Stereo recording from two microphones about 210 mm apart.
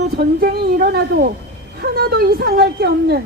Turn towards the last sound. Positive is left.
turn(degrees=-45)  # may be behind; listen again after turning